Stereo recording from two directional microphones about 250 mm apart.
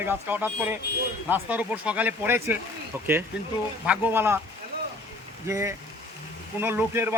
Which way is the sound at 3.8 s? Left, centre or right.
Centre.